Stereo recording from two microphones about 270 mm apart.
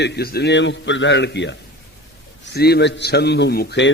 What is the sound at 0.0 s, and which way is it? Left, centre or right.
A man's voice, left.